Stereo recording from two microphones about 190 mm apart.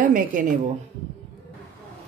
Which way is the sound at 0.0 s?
45° right (ahead or behind).